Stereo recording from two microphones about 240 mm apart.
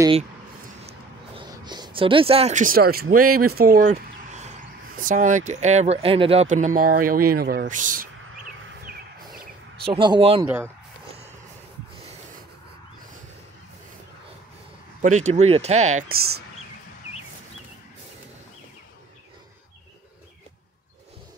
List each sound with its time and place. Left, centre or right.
0.8 s a sound: right
3.5 s speech: right
8.8 s a sound: right
9.8 s speech: centre
10.4 s speech: centre
15.0 s speech: right